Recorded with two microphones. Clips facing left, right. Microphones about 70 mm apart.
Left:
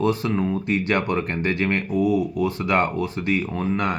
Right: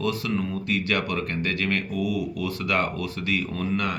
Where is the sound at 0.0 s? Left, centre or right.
Left.